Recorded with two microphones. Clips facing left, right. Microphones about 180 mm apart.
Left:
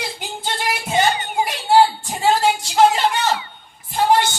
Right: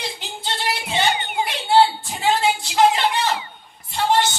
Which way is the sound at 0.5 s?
45° left (ahead or behind).